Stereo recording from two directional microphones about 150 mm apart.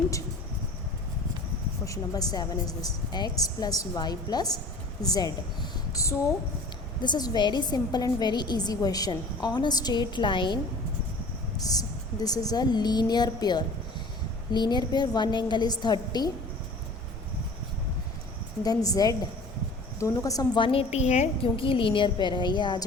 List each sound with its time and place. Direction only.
1.8 s a woman's voice: 25° left (ahead or behind)
18.6 s a woman's voice: 25° left (ahead or behind); by 21.5 s 50° left (ahead or behind)
21.5 s a woman's voice: 35° left (ahead or behind)